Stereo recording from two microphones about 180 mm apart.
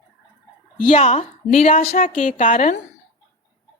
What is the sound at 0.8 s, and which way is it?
A woman's voice, 35° left (ahead or behind).